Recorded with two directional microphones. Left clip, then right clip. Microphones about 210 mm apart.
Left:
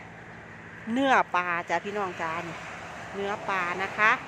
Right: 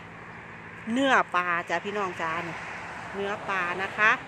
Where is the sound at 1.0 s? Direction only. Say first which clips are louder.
Even; centre (ahead or behind).